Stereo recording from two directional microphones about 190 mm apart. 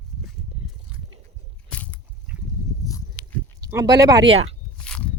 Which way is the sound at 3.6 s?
20° right (ahead or behind).